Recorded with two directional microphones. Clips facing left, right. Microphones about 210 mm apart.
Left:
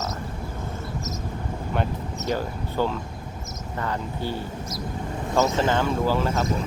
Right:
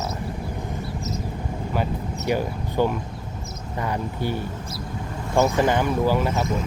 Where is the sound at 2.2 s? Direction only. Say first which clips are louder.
Right 3 dB; 15° right (ahead or behind).